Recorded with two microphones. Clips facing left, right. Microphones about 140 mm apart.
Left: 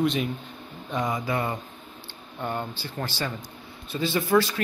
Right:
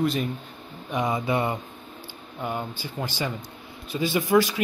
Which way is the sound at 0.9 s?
20° right (ahead or behind).